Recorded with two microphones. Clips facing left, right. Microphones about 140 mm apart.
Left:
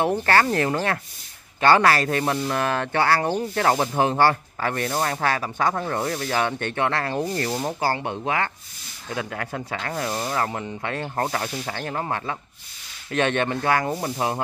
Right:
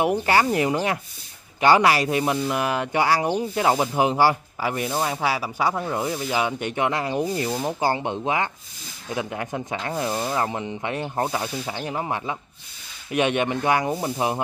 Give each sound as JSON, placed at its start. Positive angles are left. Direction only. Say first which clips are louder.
{"t": 0.0, "sound": "speech", "louder": "even", "side_deg": -15}
{"t": 13.9, "sound": "speech", "louder": "right 1 dB", "side_deg": 0}